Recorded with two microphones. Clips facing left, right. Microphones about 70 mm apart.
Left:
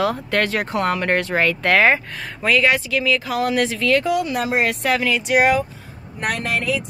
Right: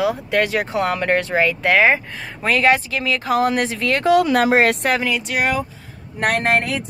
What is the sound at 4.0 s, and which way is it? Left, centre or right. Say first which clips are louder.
Speech: right 6 dB; right.